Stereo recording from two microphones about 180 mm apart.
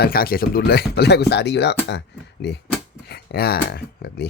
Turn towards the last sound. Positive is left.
turn(degrees=60)  # may be behind; listen again after turning